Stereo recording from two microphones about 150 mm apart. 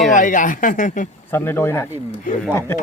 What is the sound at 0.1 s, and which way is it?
Speech, 60° left (ahead or behind).